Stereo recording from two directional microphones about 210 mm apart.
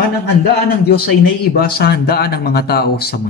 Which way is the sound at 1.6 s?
45° left (ahead or behind).